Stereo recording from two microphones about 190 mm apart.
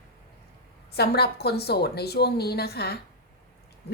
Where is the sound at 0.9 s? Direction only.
55° left (ahead or behind).